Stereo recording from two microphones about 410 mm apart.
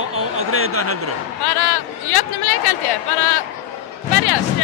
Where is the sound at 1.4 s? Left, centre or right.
Left.